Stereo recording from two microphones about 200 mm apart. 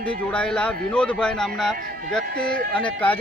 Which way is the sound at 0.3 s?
5° left (ahead or behind).